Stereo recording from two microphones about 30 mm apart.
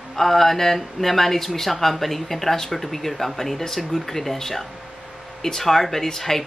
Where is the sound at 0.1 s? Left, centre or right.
Centre.